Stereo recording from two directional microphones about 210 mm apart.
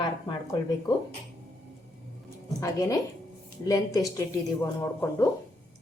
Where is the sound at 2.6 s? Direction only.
15° left (ahead or behind).